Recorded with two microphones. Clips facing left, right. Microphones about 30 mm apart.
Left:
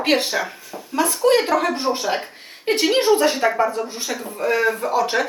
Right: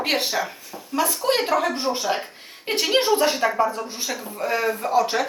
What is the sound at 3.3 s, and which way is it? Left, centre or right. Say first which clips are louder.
Speech: left 3 dB; centre.